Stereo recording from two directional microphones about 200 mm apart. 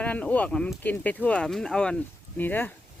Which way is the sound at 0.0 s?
5° left (ahead or behind).